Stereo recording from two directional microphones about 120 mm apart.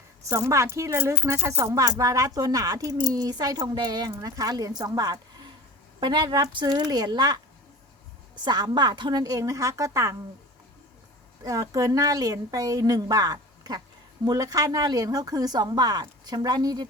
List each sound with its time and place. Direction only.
0.3 s speech: 25° right (ahead or behind)
8.4 s speech: 35° right (ahead or behind)
11.4 s speech: 30° right (ahead or behind)